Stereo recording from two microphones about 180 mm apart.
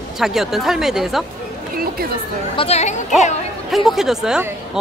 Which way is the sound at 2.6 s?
35° left (ahead or behind).